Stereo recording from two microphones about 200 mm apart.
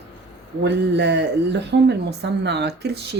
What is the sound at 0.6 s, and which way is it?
Speech, 60° right (ahead or behind).